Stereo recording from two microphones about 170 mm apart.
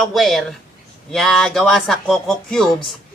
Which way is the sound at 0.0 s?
Centre (ahead or behind).